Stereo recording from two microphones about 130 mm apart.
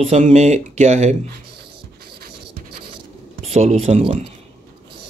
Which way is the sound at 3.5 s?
55° right (ahead or behind).